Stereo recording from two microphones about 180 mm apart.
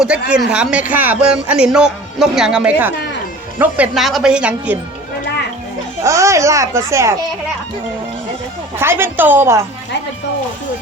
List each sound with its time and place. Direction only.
0.0 s speech: 5° right (ahead or behind)
6.0 s speech: 15° right (ahead or behind)
8.8 s speech: 10° right (ahead or behind)